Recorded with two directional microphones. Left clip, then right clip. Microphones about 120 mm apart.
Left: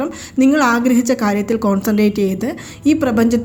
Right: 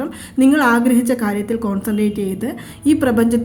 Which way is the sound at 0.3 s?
20° left (ahead or behind).